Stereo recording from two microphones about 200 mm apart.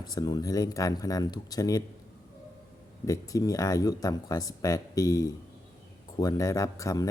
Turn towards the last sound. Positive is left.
turn(degrees=15)  # may be behind; listen again after turning